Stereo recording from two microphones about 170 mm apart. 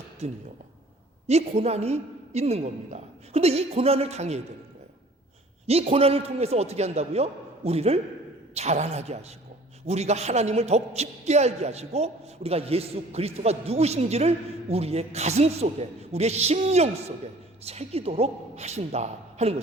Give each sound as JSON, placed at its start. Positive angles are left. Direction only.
{"t": 0.2, "sound": "a man's voice", "side_deg": -40}
{"t": 5.6, "sound": "a man's voice", "side_deg": -35}